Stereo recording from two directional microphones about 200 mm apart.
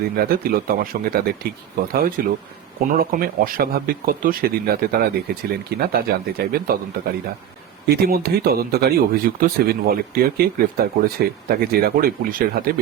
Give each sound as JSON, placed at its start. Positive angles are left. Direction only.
{"t": 0.2, "sound": "speech", "side_deg": -50}